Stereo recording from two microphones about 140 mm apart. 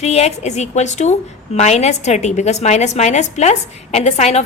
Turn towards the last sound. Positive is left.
turn(degrees=50)  # may be behind; listen again after turning